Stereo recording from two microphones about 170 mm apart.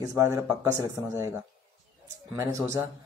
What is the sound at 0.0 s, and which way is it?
Speech, 15° right (ahead or behind).